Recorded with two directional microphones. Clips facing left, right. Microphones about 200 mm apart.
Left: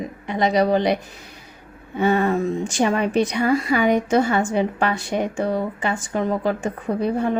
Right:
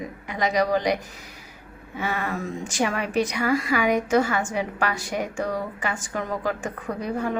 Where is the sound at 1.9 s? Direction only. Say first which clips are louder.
Left 10 dB; 30° left (ahead or behind).